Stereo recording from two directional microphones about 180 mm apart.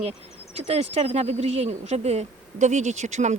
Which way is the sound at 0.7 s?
35° right (ahead or behind).